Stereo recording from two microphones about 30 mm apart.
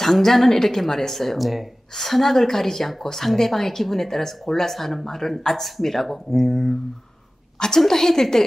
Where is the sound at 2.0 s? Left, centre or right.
Centre.